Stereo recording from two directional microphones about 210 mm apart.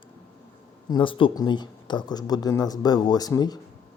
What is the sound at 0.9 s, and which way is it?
Speech, 25° left (ahead or behind).